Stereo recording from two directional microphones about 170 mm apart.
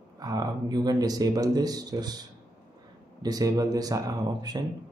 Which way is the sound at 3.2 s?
20° right (ahead or behind).